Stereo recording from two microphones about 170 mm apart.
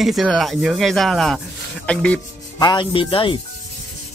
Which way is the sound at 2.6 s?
30° left (ahead or behind).